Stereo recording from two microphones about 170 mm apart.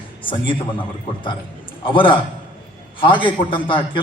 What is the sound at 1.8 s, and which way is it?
A man's voice, 30° left (ahead or behind).